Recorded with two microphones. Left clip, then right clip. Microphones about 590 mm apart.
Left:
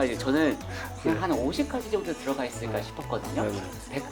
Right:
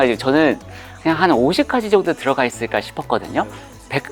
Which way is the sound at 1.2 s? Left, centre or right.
Right.